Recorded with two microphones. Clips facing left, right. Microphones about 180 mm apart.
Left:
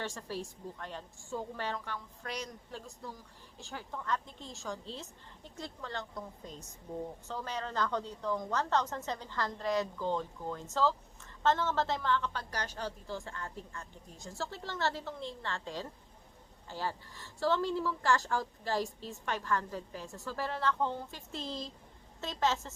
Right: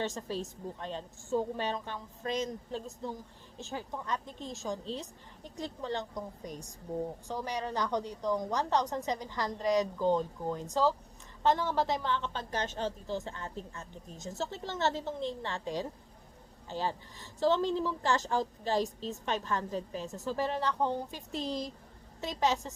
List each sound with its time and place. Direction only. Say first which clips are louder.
0.0 s a woman's voice: right 4 dB; 20° right (ahead or behind)